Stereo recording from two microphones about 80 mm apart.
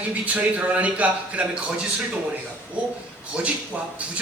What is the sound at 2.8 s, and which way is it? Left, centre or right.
A man's voice, centre.